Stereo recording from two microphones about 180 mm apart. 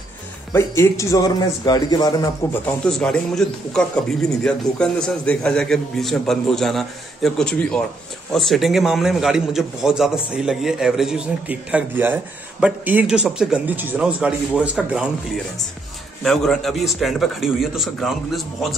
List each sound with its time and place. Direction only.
0.5 s a man's voice: 15° left (ahead or behind)
2.8 s a man's voice: 5° left (ahead or behind)